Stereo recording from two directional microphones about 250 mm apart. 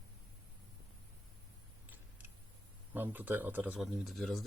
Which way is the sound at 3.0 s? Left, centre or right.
Centre.